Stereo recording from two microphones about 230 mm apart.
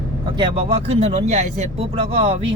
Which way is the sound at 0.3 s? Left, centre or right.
Right.